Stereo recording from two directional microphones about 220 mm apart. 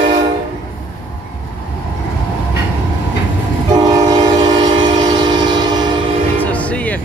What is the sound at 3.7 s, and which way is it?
Train, 15° right (ahead or behind).